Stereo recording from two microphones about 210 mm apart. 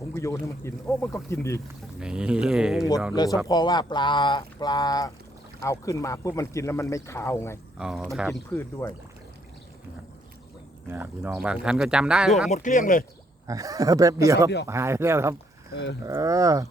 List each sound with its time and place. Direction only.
0.1 s speech: 15° left (ahead or behind)
2.0 s speech: 5° right (ahead or behind)
3.2 s speech: 20° left (ahead or behind)
7.8 s speech: centre (ahead or behind)
8.4 s speech: 10° left (ahead or behind)
10.8 s speech: 10° right (ahead or behind)
12.5 s speech: 40° left (ahead or behind)
13.5 s speech: 15° right (ahead or behind)
15.7 s speech: 55° left (ahead or behind)
16.0 s speech: 15° right (ahead or behind)